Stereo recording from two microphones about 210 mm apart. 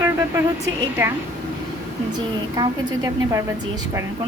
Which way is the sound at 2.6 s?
15° right (ahead or behind).